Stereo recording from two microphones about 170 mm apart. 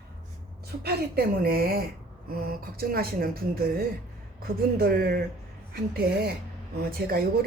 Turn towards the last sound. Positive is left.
turn(degrees=-65)  # may be behind; listen again after turning